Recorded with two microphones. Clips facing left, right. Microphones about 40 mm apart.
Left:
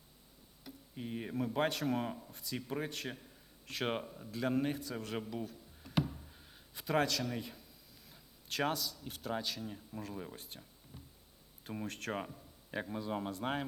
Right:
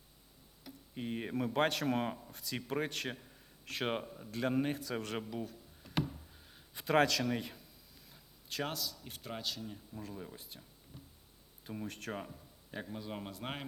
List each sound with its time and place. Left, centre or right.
0.9 s speech: centre
1.4 s speech: centre
4.8 s a sound: centre
8.1 s a man's voice: centre
11.9 s speech: centre